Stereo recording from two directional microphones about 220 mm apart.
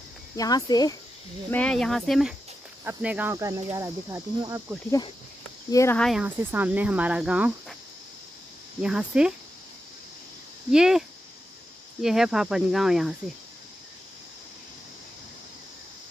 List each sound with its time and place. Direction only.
0.4 s speech: 15° left (ahead or behind)
1.5 s speech: 5° left (ahead or behind); by 4.7 s 15° right (ahead or behind)
5.7 s speech: 10° left (ahead or behind); by 7.5 s 5° right (ahead or behind)
8.8 s speech: 5° right (ahead or behind)
10.7 s speech: centre (ahead or behind)